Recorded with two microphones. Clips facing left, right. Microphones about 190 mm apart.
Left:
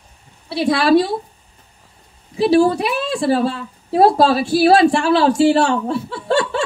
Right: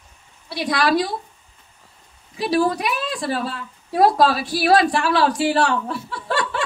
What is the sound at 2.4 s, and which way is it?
A woman's voice, 30° left (ahead or behind).